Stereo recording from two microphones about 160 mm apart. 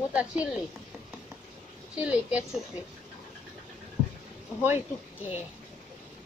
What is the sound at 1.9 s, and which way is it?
Speech, 10° right (ahead or behind).